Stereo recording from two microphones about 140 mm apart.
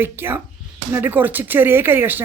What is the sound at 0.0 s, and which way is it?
Speech, 15° right (ahead or behind).